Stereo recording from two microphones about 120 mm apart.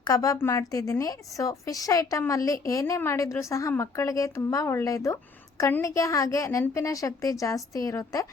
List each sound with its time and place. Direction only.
0.0 s a woman's voice: 30° left (ahead or behind)